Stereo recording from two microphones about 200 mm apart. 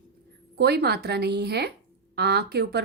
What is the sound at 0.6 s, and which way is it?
A woman's voice, 55° right (ahead or behind).